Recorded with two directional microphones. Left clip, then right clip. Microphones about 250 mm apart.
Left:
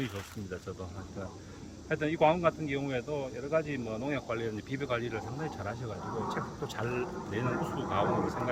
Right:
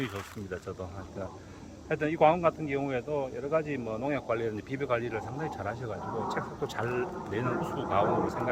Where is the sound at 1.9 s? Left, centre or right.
Centre.